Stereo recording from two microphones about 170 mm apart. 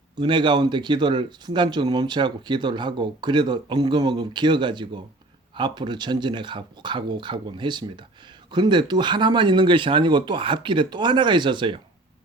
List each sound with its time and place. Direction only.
0.2 s speech: 25° right (ahead or behind)